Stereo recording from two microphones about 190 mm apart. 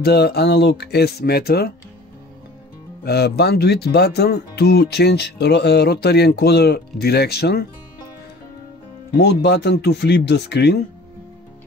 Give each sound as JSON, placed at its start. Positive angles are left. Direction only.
{"t": 0.0, "sound": "speech", "side_deg": 60}
{"t": 3.0, "sound": "speech", "side_deg": 60}
{"t": 9.1, "sound": "speech", "side_deg": 60}